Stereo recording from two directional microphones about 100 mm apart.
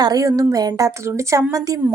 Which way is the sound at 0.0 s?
35° right (ahead or behind).